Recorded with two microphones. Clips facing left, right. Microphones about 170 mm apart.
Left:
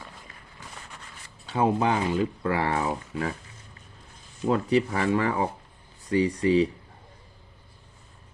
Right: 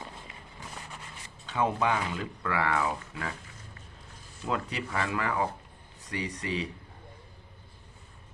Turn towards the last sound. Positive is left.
turn(degrees=30)  # may be behind; listen again after turning